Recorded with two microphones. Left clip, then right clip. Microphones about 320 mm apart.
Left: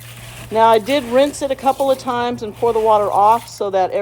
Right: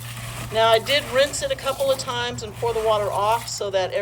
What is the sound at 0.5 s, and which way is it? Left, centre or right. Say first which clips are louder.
Speech: left 5 dB; centre.